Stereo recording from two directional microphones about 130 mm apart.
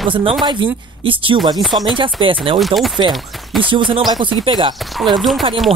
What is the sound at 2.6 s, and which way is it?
Speech, centre (ahead or behind).